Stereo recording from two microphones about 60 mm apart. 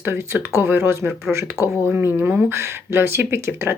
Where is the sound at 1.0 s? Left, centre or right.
Centre.